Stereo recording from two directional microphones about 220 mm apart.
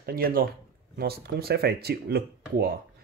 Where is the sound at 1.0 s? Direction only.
45° right (ahead or behind).